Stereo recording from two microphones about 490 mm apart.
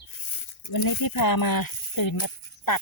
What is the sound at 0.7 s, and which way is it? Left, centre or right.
Speech, left.